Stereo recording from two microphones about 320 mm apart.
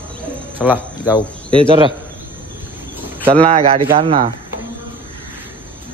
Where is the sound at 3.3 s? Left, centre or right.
Centre.